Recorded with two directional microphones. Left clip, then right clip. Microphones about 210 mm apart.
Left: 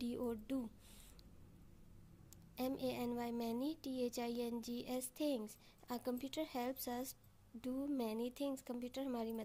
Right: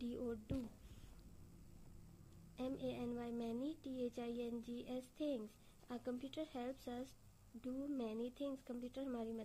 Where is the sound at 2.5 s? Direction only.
35° left (ahead or behind).